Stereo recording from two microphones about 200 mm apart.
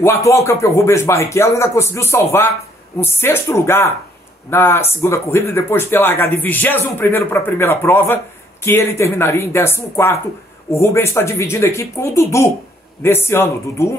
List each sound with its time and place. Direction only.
0.0 s speech: 15° left (ahead or behind)